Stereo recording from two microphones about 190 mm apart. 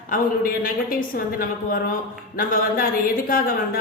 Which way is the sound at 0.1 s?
50° left (ahead or behind).